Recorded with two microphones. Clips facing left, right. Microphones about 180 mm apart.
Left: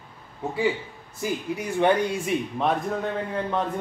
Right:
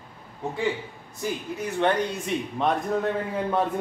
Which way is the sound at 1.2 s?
10° left (ahead or behind).